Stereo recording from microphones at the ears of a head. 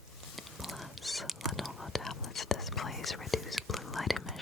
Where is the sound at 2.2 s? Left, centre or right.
Left.